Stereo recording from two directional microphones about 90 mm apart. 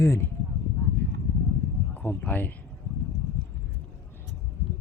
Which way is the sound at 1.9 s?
20° left (ahead or behind).